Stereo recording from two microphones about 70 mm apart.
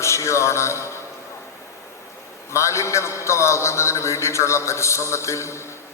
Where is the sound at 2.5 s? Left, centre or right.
Left.